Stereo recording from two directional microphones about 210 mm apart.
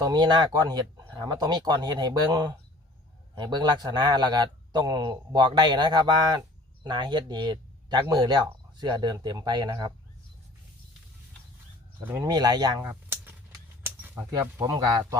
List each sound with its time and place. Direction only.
0.0 s speech: 20° right (ahead or behind)
12.0 s speech: 15° right (ahead or behind)
12.8 s a sound: 10° right (ahead or behind)
13.8 s speech: 10° right (ahead or behind)